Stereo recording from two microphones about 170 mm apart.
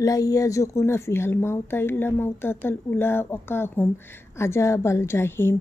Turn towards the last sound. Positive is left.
turn(degrees=15)  # may be behind; listen again after turning